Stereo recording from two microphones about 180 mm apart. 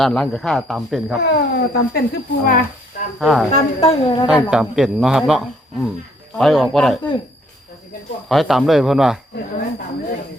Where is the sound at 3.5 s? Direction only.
35° left (ahead or behind).